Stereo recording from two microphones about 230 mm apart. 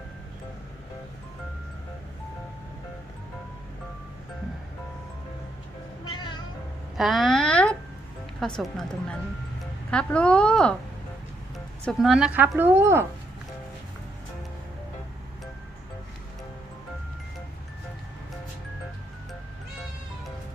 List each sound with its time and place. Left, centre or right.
6.1 s music: centre
6.9 s a sound: centre
8.4 s a woman's voice: centre